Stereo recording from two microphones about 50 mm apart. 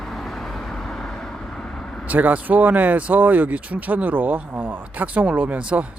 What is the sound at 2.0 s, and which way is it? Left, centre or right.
Speech, right.